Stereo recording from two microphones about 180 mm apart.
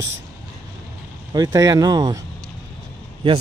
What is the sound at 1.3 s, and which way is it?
Speech, 20° right (ahead or behind).